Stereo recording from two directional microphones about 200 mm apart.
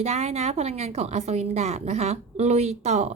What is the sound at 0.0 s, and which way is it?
A woman's voice, 35° right (ahead or behind).